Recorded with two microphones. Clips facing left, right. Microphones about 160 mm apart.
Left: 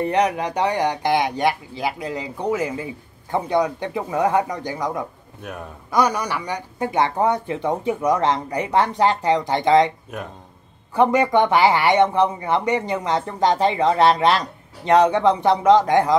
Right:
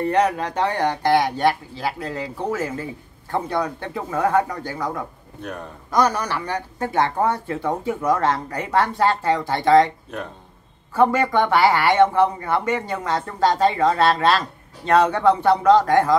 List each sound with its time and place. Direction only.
0.0 s speech: 15° left (ahead or behind)